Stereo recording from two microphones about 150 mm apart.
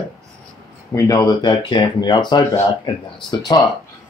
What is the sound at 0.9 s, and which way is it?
Speech, 25° left (ahead or behind).